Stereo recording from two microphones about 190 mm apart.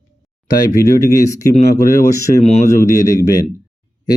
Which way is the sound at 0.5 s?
20° left (ahead or behind).